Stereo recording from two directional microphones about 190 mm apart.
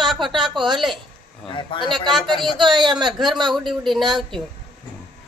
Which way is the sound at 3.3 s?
25° right (ahead or behind).